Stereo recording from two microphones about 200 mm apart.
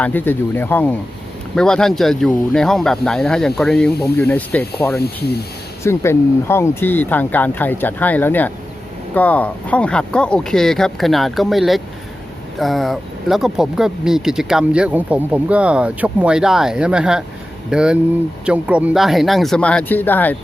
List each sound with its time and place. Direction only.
0.0 s speech: 10° left (ahead or behind)
4.9 s speech: 55° left (ahead or behind)
5.8 s speech: 15° left (ahead or behind)